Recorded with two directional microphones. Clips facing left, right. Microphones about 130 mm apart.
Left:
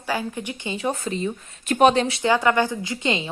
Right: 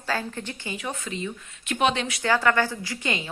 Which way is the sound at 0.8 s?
35° left (ahead or behind).